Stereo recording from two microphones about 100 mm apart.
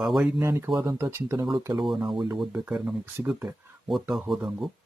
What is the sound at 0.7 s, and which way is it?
Speech, 45° right (ahead or behind).